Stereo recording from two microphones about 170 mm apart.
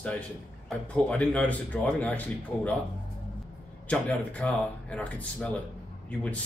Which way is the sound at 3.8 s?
10° left (ahead or behind).